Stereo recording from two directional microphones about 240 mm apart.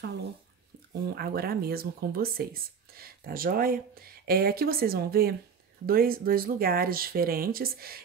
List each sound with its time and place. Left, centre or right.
1.0 s speech: right